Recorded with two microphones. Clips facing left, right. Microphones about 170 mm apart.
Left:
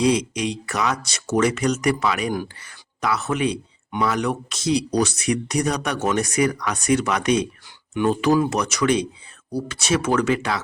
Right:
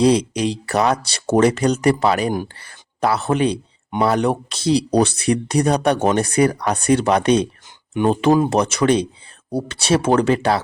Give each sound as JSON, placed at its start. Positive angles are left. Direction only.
{"t": 0.0, "sound": "speech", "side_deg": -35}